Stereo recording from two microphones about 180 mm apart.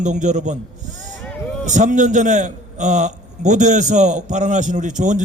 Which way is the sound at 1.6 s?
45° right (ahead or behind).